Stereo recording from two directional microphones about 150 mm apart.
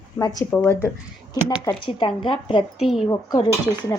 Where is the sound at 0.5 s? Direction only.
10° left (ahead or behind).